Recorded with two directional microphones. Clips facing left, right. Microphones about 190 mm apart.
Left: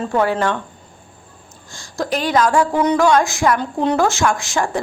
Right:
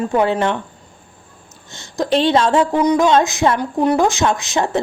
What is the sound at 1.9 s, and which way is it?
A woman's voice, 25° right (ahead or behind).